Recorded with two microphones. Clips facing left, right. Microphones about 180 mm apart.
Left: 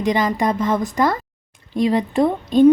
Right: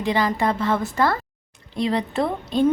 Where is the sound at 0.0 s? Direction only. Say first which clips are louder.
Left 3 dB; 20° left (ahead or behind).